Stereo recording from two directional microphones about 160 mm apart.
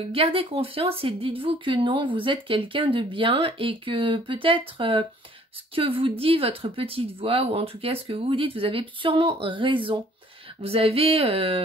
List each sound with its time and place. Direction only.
0.1 s speech: 35° right (ahead or behind)